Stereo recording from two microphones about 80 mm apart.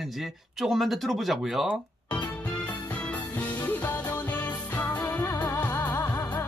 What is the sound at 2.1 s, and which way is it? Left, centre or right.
Music, centre.